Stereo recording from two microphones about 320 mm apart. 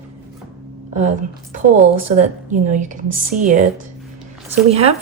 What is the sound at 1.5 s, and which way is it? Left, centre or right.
Speech, right.